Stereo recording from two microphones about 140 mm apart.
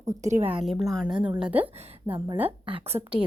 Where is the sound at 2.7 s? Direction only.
45° right (ahead or behind).